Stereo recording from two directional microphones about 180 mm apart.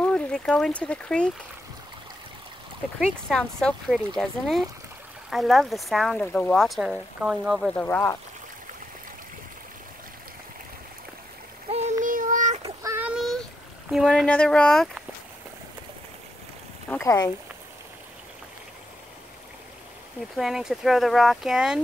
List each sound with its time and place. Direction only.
0.0 s speech: 5° left (ahead or behind)
3.0 s speech: 5° left (ahead or behind)
7.7 s speech: 10° left (ahead or behind)
12.0 s child singing: 50° right (ahead or behind)
12.6 s a sound: 15° right (ahead or behind); by 14.9 s 5° left (ahead or behind)
16.9 s speech: 15° left (ahead or behind)
20.3 s speech: centre (ahead or behind)